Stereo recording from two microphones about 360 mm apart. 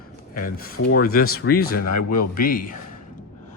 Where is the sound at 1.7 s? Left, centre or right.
Left.